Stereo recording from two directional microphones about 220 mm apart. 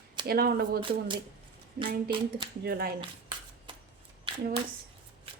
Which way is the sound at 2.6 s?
45° right (ahead or behind).